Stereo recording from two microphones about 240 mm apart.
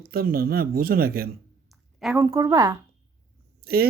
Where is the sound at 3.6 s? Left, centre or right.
Right.